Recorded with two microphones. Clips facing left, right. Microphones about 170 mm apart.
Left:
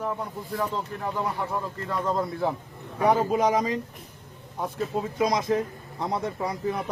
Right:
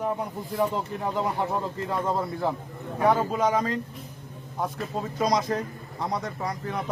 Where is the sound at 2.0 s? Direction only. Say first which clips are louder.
Left 2 dB; 5° right (ahead or behind).